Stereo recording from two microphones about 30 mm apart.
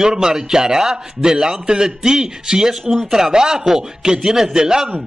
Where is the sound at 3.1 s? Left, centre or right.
Centre.